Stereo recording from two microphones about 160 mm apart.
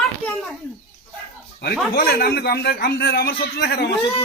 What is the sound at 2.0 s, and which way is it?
A man's voice, 70° left (ahead or behind).